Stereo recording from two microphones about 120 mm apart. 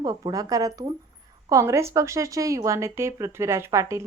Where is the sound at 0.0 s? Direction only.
30° right (ahead or behind).